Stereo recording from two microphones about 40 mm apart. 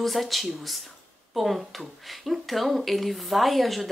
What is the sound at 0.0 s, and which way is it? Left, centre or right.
Speech, centre.